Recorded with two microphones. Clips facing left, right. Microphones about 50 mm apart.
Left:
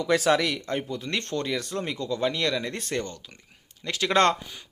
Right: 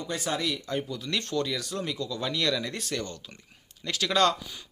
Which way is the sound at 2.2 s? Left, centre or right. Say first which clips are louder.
Left 2 dB; left.